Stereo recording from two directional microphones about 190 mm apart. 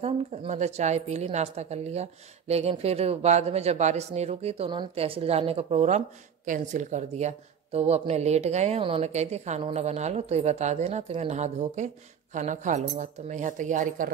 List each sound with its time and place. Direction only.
0.0 s a woman's voice: 35° right (ahead or behind)